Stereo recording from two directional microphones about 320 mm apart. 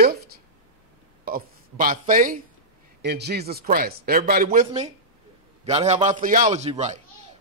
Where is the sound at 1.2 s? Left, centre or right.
Right.